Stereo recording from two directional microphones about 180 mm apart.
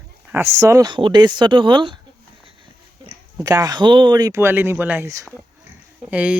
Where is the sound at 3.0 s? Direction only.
20° right (ahead or behind).